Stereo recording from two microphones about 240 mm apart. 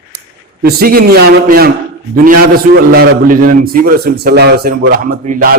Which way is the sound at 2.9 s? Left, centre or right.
Right.